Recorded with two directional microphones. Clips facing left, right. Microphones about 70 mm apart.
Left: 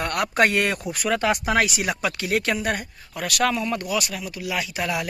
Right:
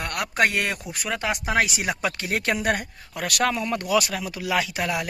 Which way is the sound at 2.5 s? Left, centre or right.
Right.